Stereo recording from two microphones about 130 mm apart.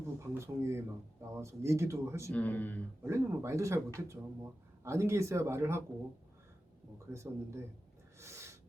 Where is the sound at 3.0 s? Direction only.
20° right (ahead or behind).